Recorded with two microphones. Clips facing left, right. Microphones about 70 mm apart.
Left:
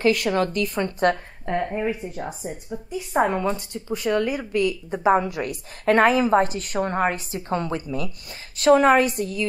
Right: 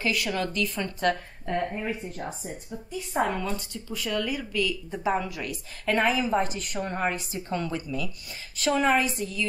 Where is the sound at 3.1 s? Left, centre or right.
Left.